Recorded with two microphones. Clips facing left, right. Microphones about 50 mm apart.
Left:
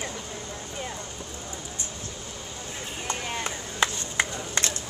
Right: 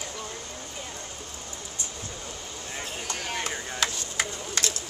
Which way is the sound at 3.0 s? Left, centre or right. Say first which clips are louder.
Left 2 dB; left.